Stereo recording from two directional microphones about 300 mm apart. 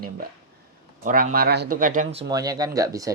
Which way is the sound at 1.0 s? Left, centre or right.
Right.